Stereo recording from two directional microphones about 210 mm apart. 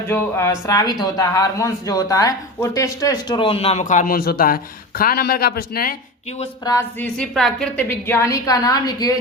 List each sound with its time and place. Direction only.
0.1 s speech: 15° left (ahead or behind); by 6.0 s 45° left (ahead or behind)
6.7 s a woman's voice: 10° left (ahead or behind)